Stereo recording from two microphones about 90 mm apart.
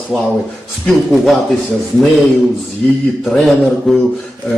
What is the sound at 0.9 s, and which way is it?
A man's voice, centre (ahead or behind).